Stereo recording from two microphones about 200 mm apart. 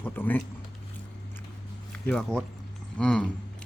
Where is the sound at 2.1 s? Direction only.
5° left (ahead or behind).